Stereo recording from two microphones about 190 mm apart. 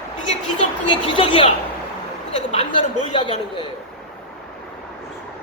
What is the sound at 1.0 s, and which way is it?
Speech, 25° left (ahead or behind).